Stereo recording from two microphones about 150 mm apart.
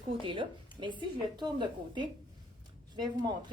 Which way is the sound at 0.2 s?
35° right (ahead or behind).